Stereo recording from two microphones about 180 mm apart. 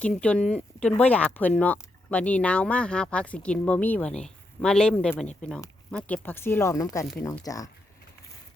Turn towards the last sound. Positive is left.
turn(degrees=20)  # may be behind; listen again after turning